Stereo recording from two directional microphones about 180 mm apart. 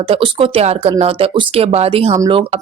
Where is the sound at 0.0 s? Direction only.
30° right (ahead or behind).